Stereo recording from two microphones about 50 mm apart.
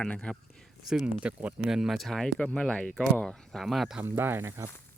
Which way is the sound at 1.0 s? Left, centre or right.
Right.